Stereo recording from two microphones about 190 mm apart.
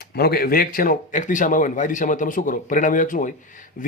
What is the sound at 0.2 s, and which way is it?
A man's voice, 55° left (ahead or behind).